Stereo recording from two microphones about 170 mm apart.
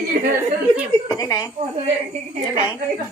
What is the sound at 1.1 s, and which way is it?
Speech, 20° left (ahead or behind).